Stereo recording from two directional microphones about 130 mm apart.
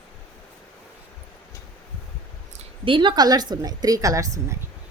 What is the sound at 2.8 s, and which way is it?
A woman's voice, 40° right (ahead or behind).